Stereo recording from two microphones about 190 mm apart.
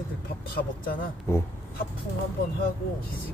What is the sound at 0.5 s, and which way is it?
Speech, 50° left (ahead or behind).